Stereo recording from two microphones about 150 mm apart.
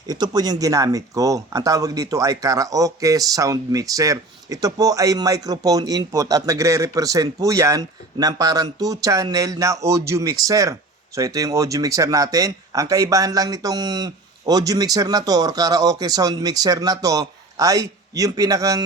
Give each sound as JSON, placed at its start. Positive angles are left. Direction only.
{"t": 0.1, "sound": "speech", "side_deg": -25}